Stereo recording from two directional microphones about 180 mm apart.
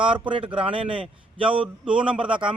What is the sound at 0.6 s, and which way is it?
Speech, 30° right (ahead or behind).